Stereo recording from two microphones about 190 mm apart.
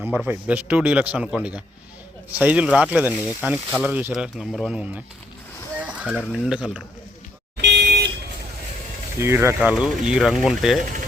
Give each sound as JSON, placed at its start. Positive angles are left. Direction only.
{"t": 0.0, "sound": "a man's voice", "side_deg": -10}
{"t": 7.5, "sound": "a sound", "side_deg": -65}
{"t": 9.1, "sound": "speech", "side_deg": -15}